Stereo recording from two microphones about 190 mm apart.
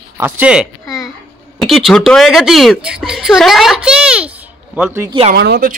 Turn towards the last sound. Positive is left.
turn(degrees=-50)  # may be behind; listen again after turning